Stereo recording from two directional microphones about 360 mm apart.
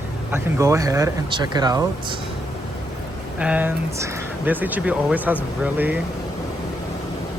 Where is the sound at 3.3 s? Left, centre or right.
Centre.